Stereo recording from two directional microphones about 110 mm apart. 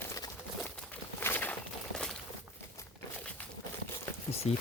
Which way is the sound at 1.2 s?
20° left (ahead or behind).